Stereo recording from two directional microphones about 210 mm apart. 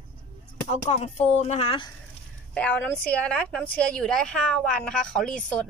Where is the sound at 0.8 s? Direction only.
30° left (ahead or behind).